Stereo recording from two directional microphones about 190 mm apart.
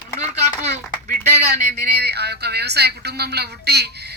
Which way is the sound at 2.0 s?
60° right (ahead or behind).